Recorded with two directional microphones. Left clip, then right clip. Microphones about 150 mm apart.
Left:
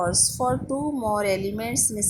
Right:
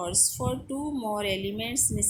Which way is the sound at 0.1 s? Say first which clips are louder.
Left 6 dB; 5° right (ahead or behind).